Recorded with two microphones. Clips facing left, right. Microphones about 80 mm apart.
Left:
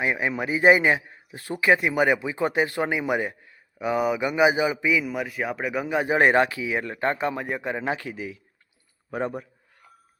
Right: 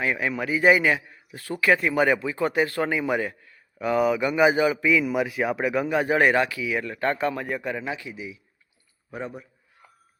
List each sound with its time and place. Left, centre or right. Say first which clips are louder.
0.0 s a man's voice: left 1 dB; left; by 6.0 s centre
6.0 s a man's voice: left 2 dB; left
7.9 s a man's voice: left 4 dB; left